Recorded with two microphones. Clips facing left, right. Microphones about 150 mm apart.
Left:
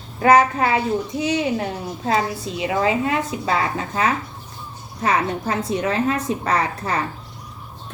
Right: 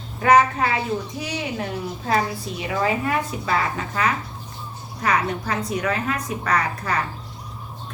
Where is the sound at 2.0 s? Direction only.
20° left (ahead or behind).